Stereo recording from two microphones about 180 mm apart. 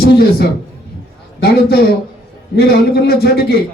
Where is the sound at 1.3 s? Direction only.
60° left (ahead or behind).